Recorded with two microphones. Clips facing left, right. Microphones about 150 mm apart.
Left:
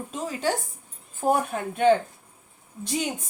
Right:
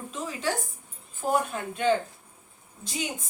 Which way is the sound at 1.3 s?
55° left (ahead or behind).